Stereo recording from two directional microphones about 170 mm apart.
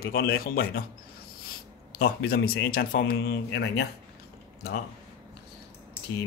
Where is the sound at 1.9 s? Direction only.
65° left (ahead or behind); by 3.9 s 80° left.